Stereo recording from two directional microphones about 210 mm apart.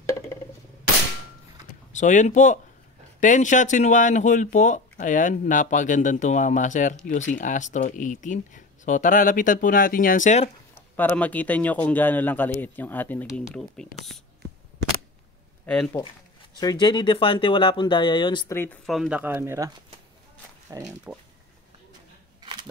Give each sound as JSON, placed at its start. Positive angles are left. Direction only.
{"t": 1.9, "sound": "speech", "side_deg": 35}
{"t": 10.7, "sound": "speech", "side_deg": 10}
{"t": 15.6, "sound": "speech", "side_deg": 5}
{"t": 16.5, "sound": "speech", "side_deg": 20}
{"t": 18.6, "sound": "speech", "side_deg": 5}
{"t": 20.7, "sound": "speech", "side_deg": -10}
{"t": 22.4, "sound": "camera", "side_deg": -20}